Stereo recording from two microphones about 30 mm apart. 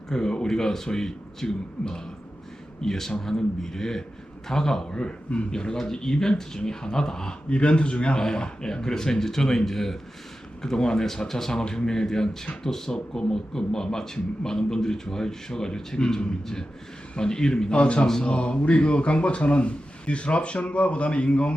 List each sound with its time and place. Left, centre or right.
0.1 s a man's voice: left
2.8 s a man's voice: centre
7.5 s speech: left
8.2 s a man's voice: left
10.6 s a man's voice: left
11.0 s a man's voice: centre
17.7 s speech: left
18.0 s a man's voice: left
18.3 s speech: left